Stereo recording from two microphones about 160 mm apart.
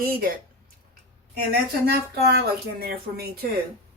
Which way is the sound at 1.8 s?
80° right.